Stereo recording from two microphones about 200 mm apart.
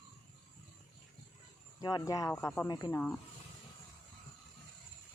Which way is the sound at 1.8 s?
15° left (ahead or behind).